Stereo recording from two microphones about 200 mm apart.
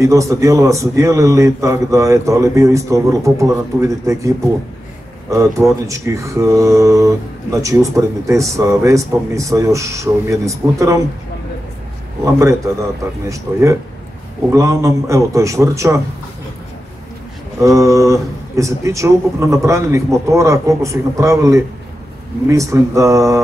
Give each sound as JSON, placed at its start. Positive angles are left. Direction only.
{"t": 0.0, "sound": "speech", "side_deg": -15}
{"t": 5.3, "sound": "speech", "side_deg": -15}
{"t": 12.3, "sound": "speech", "side_deg": -15}
{"t": 17.6, "sound": "speech", "side_deg": -15}